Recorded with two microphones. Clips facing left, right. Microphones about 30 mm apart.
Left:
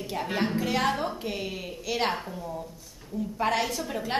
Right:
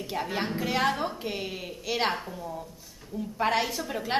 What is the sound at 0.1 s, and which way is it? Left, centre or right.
A woman's voice, centre.